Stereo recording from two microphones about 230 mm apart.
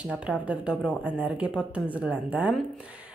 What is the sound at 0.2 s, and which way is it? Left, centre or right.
A woman's voice, centre.